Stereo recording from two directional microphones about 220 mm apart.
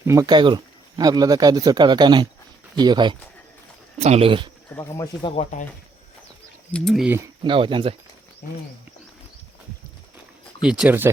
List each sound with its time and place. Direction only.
0.0 s speech: 15° right (ahead or behind)
4.7 s speech: 15° left (ahead or behind)
5.3 s speech: 30° left (ahead or behind)
6.7 s speech: 5° left (ahead or behind)
7.4 s speech: 25° right (ahead or behind)
10.6 s speech: 5° right (ahead or behind)